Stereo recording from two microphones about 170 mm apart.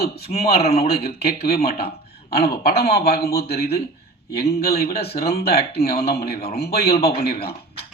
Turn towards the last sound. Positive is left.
turn(degrees=70)  # may be behind; listen again after turning